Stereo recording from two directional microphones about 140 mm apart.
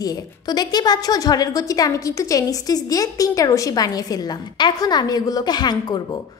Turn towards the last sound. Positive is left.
turn(degrees=30)  # may be behind; listen again after turning